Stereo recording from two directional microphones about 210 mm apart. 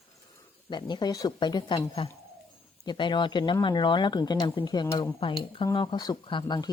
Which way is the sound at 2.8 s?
20° left (ahead or behind).